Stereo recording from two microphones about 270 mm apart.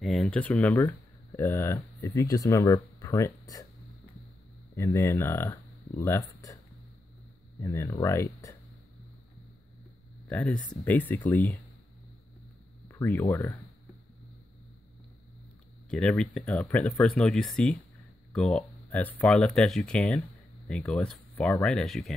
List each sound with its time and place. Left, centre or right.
0.0 s speech: centre
4.7 s speech: centre
7.6 s speech: centre
10.3 s speech: centre
12.8 s speech: centre
15.9 s speech: centre